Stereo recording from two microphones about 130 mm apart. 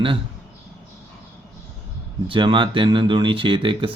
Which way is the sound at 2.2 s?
40° right (ahead or behind).